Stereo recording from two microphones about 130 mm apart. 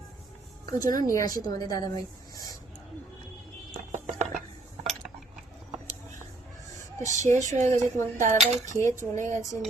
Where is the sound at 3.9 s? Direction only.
70° right (ahead or behind).